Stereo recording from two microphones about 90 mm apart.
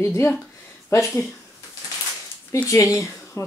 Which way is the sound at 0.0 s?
25° left (ahead or behind).